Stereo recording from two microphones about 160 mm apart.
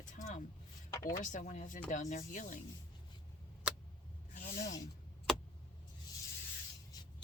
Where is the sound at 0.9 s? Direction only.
20° left (ahead or behind).